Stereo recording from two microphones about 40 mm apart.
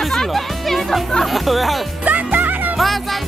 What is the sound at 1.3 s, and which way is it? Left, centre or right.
Speech, centre.